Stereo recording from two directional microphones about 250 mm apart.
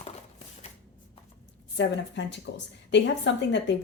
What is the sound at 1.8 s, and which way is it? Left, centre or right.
Speech, left.